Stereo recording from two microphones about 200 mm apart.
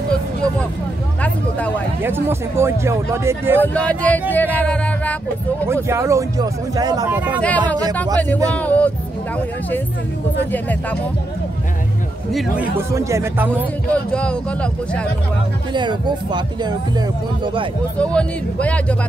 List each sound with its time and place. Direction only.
2.0 s speech: 10° right (ahead or behind)
3.6 s music: 5° left (ahead or behind)
5.9 s speech: 15° right (ahead or behind)
8.5 s music: 5° left (ahead or behind)
10.5 s music: 10° left (ahead or behind)
12.3 s speech: centre (ahead or behind)
12.7 s speech: 15° right (ahead or behind)
13.9 s speech: 5° left (ahead or behind)
15.7 s speech: 20° right (ahead or behind)
17.9 s music: 5° left (ahead or behind)